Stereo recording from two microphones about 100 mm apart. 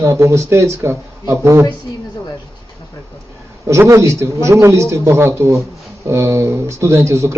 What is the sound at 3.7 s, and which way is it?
Speech, 30° right (ahead or behind).